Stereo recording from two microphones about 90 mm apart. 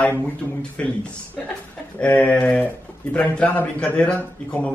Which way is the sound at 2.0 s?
15° left (ahead or behind).